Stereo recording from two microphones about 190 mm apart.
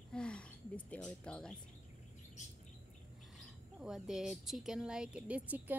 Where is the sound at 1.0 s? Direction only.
5° left (ahead or behind).